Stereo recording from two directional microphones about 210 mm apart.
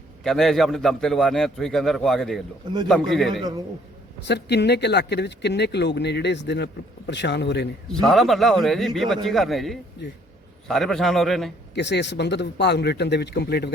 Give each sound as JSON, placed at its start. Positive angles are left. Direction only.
{"t": 0.3, "sound": "a man's voice", "side_deg": 0}
{"t": 4.3, "sound": "speech", "side_deg": 55}
{"t": 8.0, "sound": "a man's voice", "side_deg": 0}
{"t": 11.7, "sound": "speech", "side_deg": 55}